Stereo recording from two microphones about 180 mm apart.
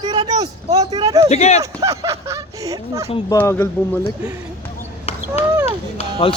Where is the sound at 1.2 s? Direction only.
35° left (ahead or behind).